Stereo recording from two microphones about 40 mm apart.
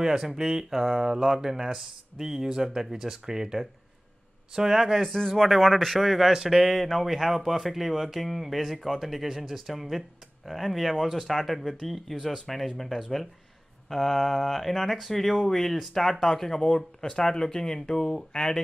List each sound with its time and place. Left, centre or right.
0.0 s speech: centre
5.0 s speech: centre
5.9 s speech: centre
6.7 s speech: centre